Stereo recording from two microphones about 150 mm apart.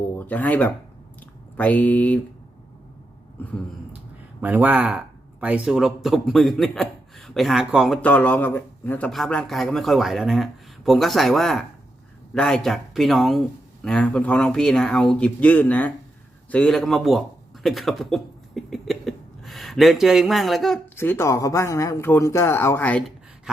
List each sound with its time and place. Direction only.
0.2 s speech: 10° left (ahead or behind)
4.4 s speech: 10° right (ahead or behind)
8.0 s a man's voice: 10° left (ahead or behind)
16.5 s a sound: 5° left (ahead or behind)
20.9 s speech: 15° left (ahead or behind)